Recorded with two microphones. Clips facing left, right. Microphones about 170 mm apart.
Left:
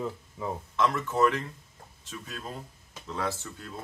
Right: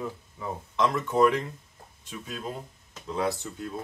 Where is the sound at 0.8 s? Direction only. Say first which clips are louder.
Right 3 dB; 15° right (ahead or behind).